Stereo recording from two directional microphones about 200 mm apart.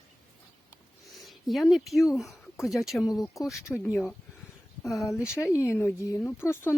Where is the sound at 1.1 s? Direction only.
Centre (ahead or behind).